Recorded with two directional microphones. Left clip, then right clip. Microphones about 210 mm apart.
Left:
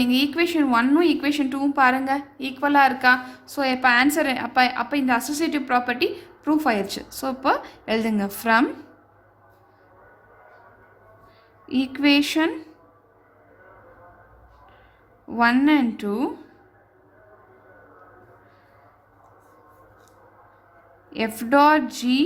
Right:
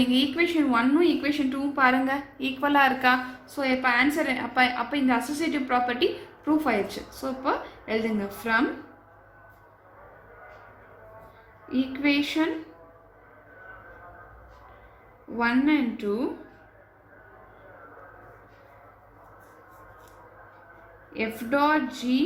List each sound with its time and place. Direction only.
0.0 s a woman's voice: 40° left (ahead or behind)
11.7 s a woman's voice: 50° left (ahead or behind)
15.4 s a woman's voice: 50° left (ahead or behind)
21.1 s a woman's voice: 50° left (ahead or behind)